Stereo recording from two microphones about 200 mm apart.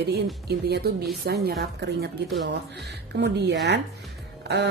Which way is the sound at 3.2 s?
55° right (ahead or behind).